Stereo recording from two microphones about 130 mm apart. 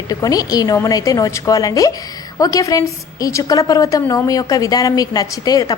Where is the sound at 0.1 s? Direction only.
25° left (ahead or behind).